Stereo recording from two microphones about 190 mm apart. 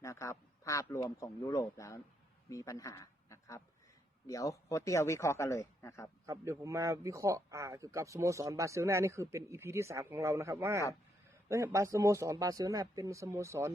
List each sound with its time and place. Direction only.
0.0 s speech: 15° left (ahead or behind)
6.2 s speech: 15° right (ahead or behind)